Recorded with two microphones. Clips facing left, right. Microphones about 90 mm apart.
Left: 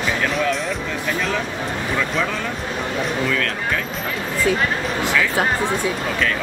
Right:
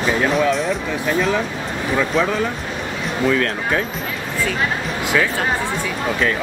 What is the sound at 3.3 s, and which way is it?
Speech, 25° right (ahead or behind).